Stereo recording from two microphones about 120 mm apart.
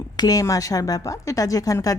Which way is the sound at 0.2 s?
30° left (ahead or behind).